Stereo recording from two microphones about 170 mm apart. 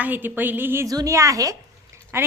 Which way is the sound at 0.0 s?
10° right (ahead or behind).